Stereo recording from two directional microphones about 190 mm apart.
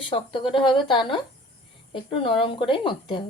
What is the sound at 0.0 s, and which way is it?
A woman's voice, 25° left (ahead or behind).